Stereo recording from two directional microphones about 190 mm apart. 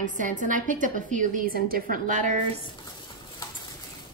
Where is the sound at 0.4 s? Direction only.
45° right (ahead or behind).